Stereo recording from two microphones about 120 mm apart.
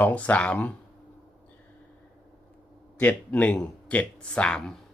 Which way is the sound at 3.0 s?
10° left (ahead or behind).